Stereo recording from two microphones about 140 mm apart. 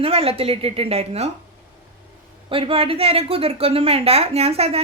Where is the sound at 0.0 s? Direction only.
45° right (ahead or behind).